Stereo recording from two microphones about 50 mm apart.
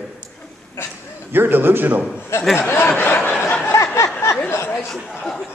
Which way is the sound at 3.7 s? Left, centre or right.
Left.